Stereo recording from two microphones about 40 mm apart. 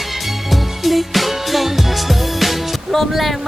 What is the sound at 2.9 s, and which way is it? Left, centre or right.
Speech, centre.